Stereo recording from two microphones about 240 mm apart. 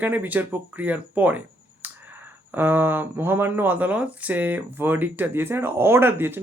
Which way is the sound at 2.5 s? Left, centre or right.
Centre.